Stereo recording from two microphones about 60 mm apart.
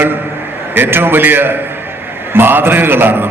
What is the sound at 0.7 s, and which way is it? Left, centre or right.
A man's voice, right.